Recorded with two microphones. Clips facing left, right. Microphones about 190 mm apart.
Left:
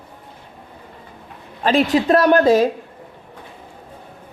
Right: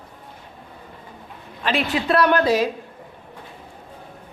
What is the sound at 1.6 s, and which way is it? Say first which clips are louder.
Speech: left 6 dB; 40° left (ahead or behind).